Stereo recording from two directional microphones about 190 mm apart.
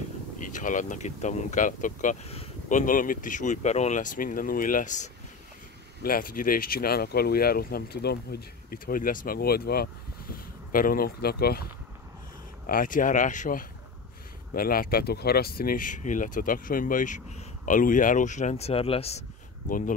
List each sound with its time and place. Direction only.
0.4 s speech: 40° left (ahead or behind)
12.6 s speech: 45° left (ahead or behind)